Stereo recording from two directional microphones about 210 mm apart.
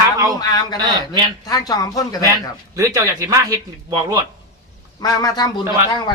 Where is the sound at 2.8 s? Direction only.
15° right (ahead or behind).